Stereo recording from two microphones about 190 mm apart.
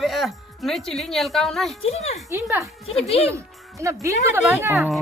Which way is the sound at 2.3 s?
10° right (ahead or behind).